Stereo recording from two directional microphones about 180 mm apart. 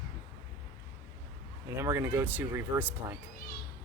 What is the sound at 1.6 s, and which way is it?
Speech, 15° right (ahead or behind).